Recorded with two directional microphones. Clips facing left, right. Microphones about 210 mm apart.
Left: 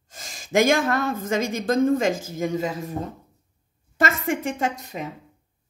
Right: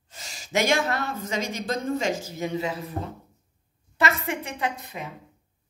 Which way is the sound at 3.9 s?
50° left (ahead or behind).